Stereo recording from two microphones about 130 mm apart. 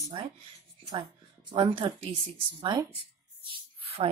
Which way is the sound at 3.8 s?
50° right (ahead or behind).